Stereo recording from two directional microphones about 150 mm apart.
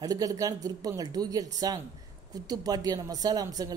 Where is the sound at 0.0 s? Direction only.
25° right (ahead or behind).